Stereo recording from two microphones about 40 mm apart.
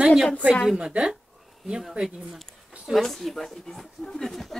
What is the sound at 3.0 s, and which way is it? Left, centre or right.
Speech, centre.